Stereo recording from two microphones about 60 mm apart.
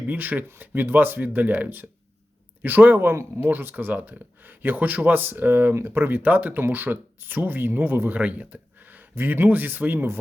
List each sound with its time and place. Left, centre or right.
0.1 s speech: right
8.2 s speech: right